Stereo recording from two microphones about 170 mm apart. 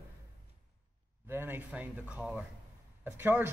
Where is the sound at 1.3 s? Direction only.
10° right (ahead or behind).